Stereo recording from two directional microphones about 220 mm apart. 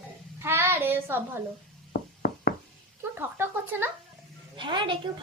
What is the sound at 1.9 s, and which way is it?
Knock, 50° left (ahead or behind).